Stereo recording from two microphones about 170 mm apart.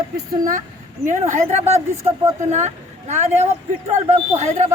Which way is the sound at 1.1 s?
45° right (ahead or behind).